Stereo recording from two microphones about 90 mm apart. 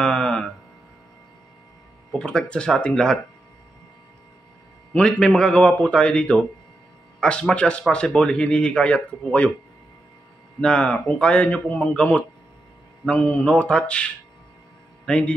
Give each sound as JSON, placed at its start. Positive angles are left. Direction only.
{"t": 0.0, "sound": "a sound", "side_deg": 5}
{"t": 2.1, "sound": "a man's voice", "side_deg": 10}
{"t": 4.9, "sound": "a man's voice", "side_deg": 10}
{"t": 10.6, "sound": "a man's voice", "side_deg": 10}
{"t": 13.1, "sound": "mantra", "side_deg": 20}
{"t": 13.5, "sound": "a man's voice", "side_deg": 10}